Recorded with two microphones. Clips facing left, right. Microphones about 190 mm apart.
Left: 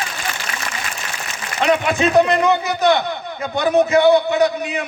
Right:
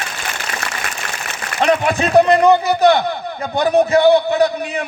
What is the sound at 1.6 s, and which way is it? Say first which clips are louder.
A man's voice: right 1 dB; 35° right (ahead or behind).